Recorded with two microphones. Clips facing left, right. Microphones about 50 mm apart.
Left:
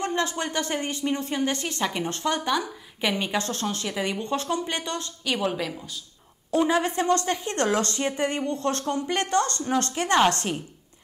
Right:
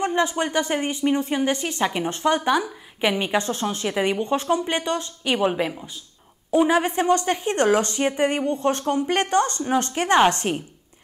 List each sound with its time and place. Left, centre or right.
0.0 s speech: centre